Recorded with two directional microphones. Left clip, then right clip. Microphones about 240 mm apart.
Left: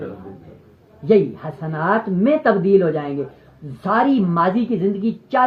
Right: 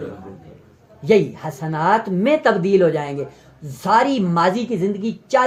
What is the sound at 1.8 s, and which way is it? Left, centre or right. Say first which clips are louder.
Speech: right 2 dB; right.